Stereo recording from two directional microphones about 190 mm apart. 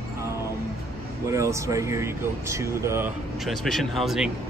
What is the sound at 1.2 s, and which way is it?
Speech, 15° right (ahead or behind).